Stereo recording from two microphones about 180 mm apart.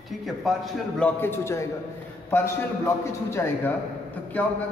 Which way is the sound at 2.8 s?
15° left (ahead or behind).